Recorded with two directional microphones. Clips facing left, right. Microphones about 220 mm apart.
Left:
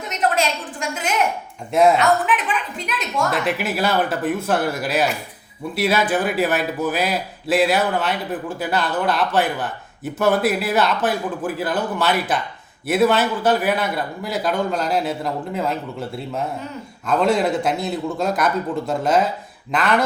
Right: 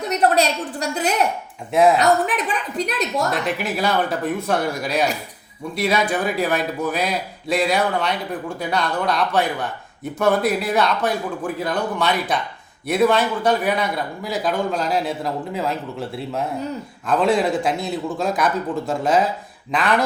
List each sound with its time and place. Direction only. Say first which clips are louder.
0.1 s a woman's voice: right 3 dB; 35° right (ahead or behind)
1.7 s a man's voice: even; centre (ahead or behind)
2.0 s a woman's voice: right 1 dB; 40° right (ahead or behind)
3.3 s a man's voice: left 1 dB; 5° left (ahead or behind)